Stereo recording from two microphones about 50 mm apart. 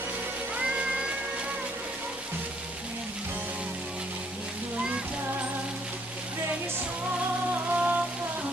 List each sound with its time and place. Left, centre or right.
0.6 s music: right
7.7 s raindrop: right